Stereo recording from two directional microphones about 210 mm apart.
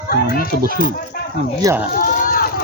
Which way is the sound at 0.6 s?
45° right (ahead or behind).